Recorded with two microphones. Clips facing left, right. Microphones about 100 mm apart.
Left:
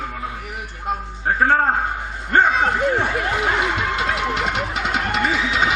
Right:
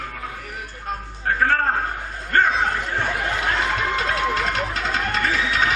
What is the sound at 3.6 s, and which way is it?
Music, 15° left (ahead or behind).